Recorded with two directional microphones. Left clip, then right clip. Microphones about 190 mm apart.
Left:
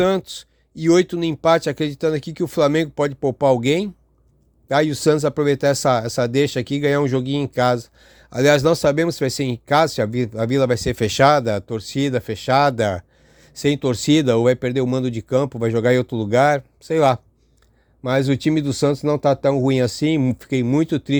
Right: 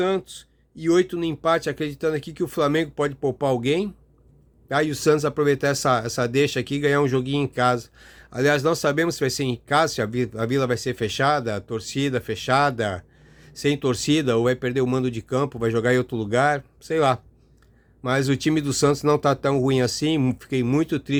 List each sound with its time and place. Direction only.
0.0 s speech: 40° left (ahead or behind)